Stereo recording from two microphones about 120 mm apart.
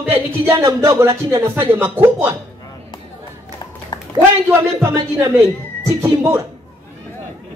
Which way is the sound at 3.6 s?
35° left (ahead or behind).